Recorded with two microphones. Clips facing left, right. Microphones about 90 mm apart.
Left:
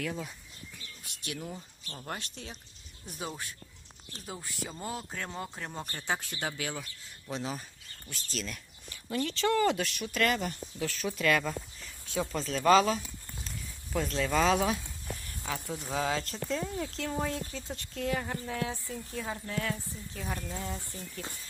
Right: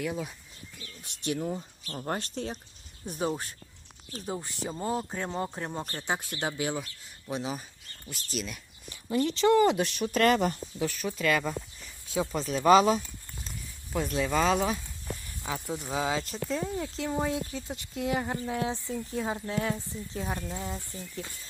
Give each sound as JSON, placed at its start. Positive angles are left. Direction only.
{"t": 0.0, "sound": "speech", "side_deg": -15}
{"t": 1.0, "sound": "speech", "side_deg": -30}
{"t": 2.0, "sound": "speech", "side_deg": -35}
{"t": 4.8, "sound": "speech", "side_deg": -25}
{"t": 7.3, "sound": "speech", "side_deg": -10}
{"t": 10.9, "sound": "speech", "side_deg": 0}
{"t": 15.4, "sound": "speech", "side_deg": -10}